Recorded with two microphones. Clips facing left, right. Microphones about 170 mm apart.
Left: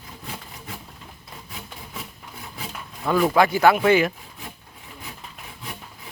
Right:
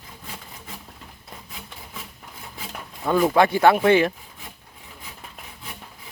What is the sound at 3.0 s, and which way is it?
Speech, 20° right (ahead or behind).